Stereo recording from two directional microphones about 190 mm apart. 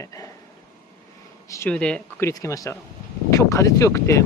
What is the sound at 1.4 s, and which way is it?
Speech, 15° left (ahead or behind).